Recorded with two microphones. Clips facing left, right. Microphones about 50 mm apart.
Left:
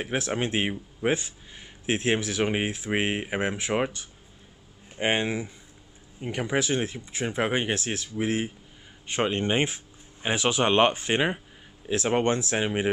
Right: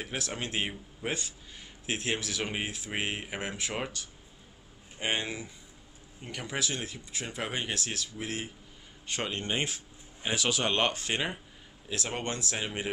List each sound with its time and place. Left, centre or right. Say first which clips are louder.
0.0 s speech: left 8 dB; left